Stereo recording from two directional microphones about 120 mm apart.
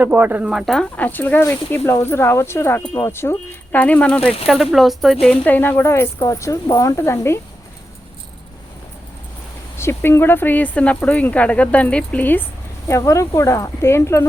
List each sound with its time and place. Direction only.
0.0 s speech: 15° right (ahead or behind)
0.6 s speech: 5° left (ahead or behind)
4.4 s speech: centre (ahead or behind)
5.2 s speech: 10° left (ahead or behind)
9.7 s speech: 20° left (ahead or behind)
12.9 s speech: 25° left (ahead or behind)